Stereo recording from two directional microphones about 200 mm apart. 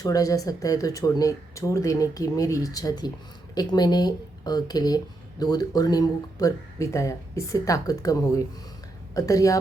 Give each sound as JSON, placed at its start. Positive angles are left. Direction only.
{"t": 0.0, "sound": "speech", "side_deg": 15}